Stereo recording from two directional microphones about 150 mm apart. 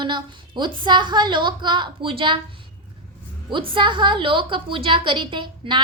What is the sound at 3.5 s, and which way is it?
A woman's voice, 35° right (ahead or behind).